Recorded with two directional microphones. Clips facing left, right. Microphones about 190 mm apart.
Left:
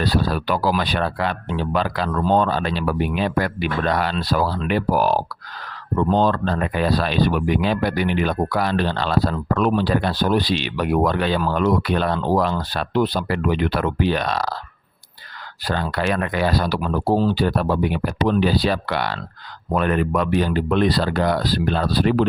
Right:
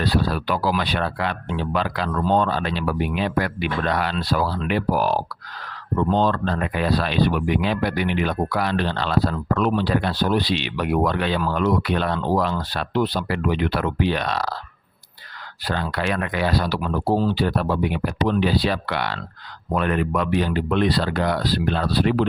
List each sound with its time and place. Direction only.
0.0 s speech: 40° left (ahead or behind)
15.6 s speech: 40° left (ahead or behind)